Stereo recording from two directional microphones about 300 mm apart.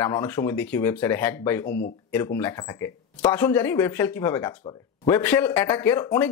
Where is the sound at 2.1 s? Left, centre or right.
Centre.